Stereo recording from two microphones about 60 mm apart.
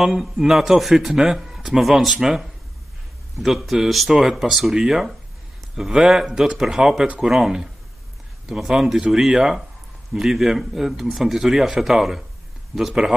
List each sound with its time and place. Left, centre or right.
0.0 s speech: centre